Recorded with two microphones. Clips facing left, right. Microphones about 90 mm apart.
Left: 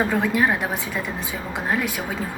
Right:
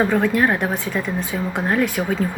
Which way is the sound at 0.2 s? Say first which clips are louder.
Right 3 dB; centre (ahead or behind).